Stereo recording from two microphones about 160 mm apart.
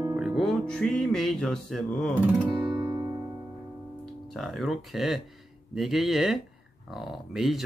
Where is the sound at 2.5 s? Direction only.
30° right (ahead or behind).